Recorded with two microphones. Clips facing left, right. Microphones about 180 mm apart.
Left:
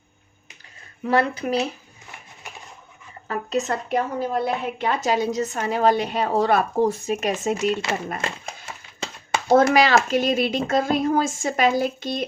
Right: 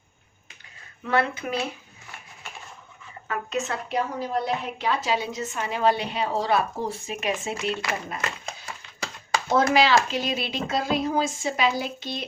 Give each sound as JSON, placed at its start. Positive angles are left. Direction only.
{"t": 1.0, "sound": "speech", "side_deg": 35}
{"t": 3.2, "sound": "a woman's voice", "side_deg": 35}
{"t": 8.2, "sound": "a sound", "side_deg": 25}
{"t": 9.5, "sound": "a woman's voice", "side_deg": 50}